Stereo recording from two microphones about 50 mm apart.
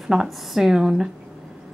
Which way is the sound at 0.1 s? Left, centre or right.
Centre.